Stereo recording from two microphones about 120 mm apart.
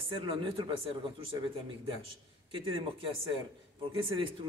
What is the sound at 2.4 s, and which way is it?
Speech, 45° right (ahead or behind).